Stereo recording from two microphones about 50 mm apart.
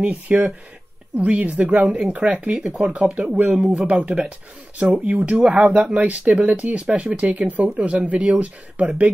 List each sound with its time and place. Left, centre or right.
0.0 s speech: right
3.5 s speech: centre
3.8 s speech: right